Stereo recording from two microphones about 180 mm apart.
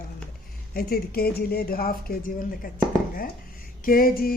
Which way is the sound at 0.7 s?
55° left (ahead or behind).